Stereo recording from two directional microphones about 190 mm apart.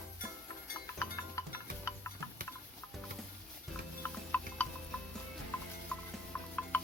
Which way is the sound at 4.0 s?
10° left (ahead or behind).